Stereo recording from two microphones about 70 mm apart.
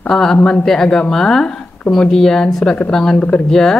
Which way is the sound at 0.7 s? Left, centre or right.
Centre.